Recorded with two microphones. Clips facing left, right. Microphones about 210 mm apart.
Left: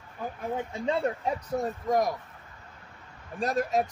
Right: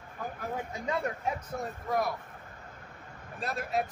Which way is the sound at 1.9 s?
40° left (ahead or behind).